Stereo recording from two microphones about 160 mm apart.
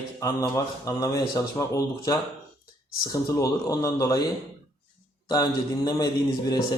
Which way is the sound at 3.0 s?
20° left (ahead or behind).